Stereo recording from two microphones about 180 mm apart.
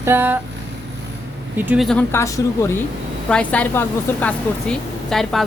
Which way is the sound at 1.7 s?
Centre (ahead or behind).